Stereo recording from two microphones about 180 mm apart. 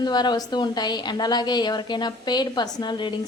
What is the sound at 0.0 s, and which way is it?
A woman's voice, 25° left (ahead or behind).